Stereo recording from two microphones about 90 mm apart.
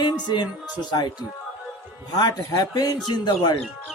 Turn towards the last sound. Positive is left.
turn(degrees=50)  # may be behind; listen again after turning